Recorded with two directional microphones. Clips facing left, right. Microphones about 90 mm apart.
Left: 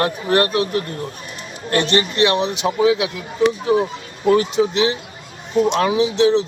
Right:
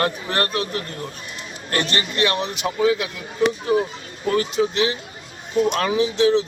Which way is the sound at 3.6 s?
25° left (ahead or behind).